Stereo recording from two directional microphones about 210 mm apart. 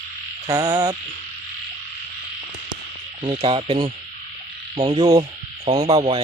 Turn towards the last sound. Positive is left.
turn(degrees=-25)  # may be behind; listen again after turning